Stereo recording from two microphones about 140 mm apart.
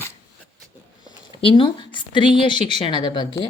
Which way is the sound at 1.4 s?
40° left (ahead or behind).